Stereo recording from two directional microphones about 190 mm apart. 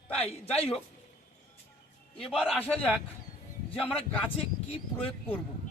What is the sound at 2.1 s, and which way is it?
A man's voice, centre (ahead or behind).